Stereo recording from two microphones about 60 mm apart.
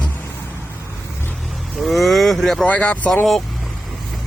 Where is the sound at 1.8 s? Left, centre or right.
Centre.